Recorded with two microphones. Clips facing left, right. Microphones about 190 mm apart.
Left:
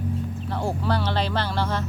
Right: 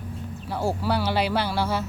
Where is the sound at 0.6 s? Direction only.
5° right (ahead or behind).